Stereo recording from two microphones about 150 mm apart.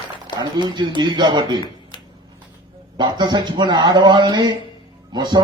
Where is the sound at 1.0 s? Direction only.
30° right (ahead or behind).